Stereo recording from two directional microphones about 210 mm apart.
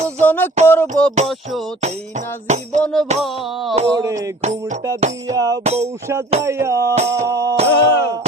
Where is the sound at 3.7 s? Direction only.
20° right (ahead or behind).